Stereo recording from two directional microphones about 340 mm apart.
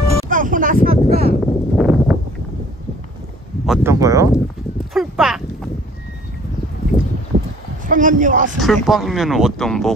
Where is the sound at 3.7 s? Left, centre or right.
Centre.